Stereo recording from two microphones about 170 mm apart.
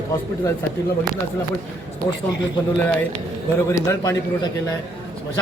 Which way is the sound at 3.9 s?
20° left (ahead or behind).